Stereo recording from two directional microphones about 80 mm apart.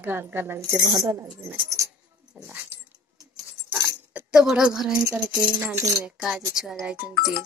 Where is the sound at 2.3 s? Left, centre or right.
Centre.